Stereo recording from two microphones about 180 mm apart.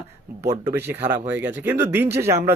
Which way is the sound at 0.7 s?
10° right (ahead or behind).